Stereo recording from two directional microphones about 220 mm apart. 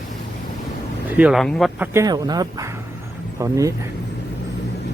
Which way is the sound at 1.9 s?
15° right (ahead or behind).